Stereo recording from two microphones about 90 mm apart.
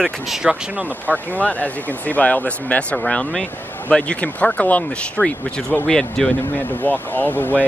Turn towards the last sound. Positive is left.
turn(degrees=20)  # may be behind; listen again after turning